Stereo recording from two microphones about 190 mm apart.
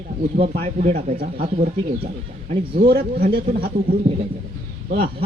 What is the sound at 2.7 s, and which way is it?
A man's voice, 55° right (ahead or behind).